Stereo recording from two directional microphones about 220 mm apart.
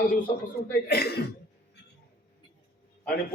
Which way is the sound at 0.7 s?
45° left (ahead or behind).